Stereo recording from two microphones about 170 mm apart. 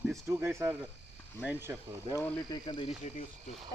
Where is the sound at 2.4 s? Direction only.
25° left (ahead or behind).